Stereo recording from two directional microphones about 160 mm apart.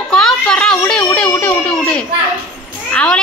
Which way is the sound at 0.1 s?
5° left (ahead or behind).